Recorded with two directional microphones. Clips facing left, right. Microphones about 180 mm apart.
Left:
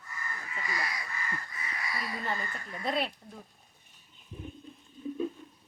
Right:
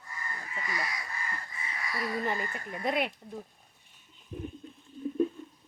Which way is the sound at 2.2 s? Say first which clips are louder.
Right 3 dB; 20° right (ahead or behind).